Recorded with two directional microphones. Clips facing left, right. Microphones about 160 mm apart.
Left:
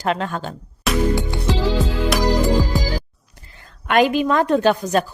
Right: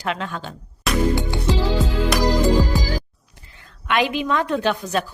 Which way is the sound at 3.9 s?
45° left (ahead or behind).